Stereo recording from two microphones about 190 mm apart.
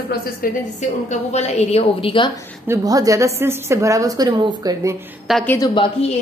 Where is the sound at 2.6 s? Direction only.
15° right (ahead or behind).